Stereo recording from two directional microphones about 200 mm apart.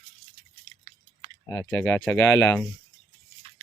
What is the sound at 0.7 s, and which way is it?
Chewing, 20° right (ahead or behind).